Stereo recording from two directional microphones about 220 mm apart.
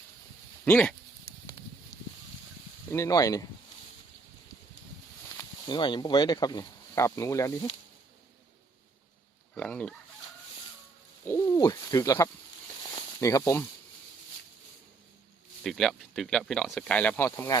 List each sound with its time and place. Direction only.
0.6 s speech: 5° left (ahead or behind)
2.9 s speech: 15° left (ahead or behind)
5.4 s speech: 20° left (ahead or behind)
9.6 s chicken: 5° left (ahead or behind)
11.3 s a sound: 15° left (ahead or behind)
15.6 s speech: centre (ahead or behind)